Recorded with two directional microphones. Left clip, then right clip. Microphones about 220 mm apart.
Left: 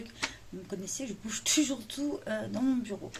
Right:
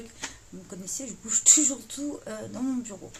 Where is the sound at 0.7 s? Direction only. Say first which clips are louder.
Right 1 dB; 5° right (ahead or behind).